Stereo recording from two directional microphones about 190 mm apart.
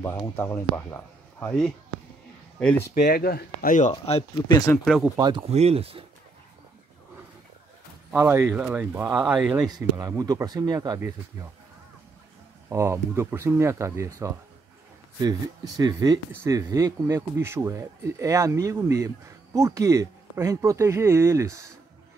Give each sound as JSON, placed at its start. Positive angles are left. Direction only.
{"t": 0.4, "sound": "speech", "side_deg": 10}
{"t": 2.9, "sound": "speech", "side_deg": 55}
{"t": 3.9, "sound": "speech", "side_deg": 30}
{"t": 4.8, "sound": "speech", "side_deg": 0}
{"t": 5.1, "sound": "speech", "side_deg": -20}
{"t": 5.5, "sound": "speech", "side_deg": -35}
{"t": 8.1, "sound": "speech", "side_deg": -10}
{"t": 9.2, "sound": "speech", "side_deg": 0}
{"t": 9.5, "sound": "speech", "side_deg": -20}
{"t": 12.6, "sound": "speech", "side_deg": -15}